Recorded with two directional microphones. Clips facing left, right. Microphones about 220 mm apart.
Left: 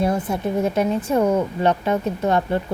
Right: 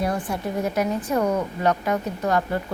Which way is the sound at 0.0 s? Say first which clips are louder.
Left 4 dB; 25° left (ahead or behind).